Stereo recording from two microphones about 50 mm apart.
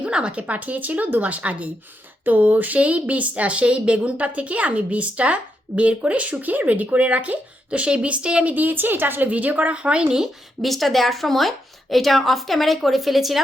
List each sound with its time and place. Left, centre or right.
0.0 s speech: right
8.5 s a woman's voice: right
9.3 s speech: right
10.6 s a woman's voice: centre